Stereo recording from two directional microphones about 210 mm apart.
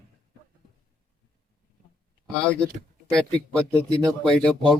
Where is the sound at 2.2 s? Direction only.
5° left (ahead or behind).